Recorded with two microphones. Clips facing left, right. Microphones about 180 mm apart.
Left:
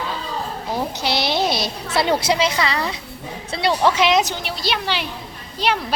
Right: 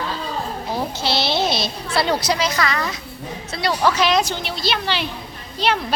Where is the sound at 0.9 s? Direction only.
15° left (ahead or behind).